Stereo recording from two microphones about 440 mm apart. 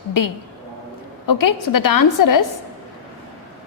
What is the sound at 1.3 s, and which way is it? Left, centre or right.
A woman's voice, left.